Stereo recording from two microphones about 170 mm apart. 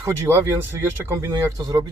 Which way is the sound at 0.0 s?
15° right (ahead or behind).